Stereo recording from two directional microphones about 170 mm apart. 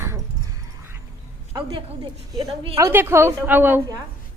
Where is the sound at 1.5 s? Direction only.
25° right (ahead or behind).